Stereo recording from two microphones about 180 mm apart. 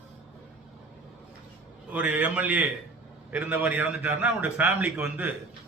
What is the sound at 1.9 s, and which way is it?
A man's voice, 10° right (ahead or behind).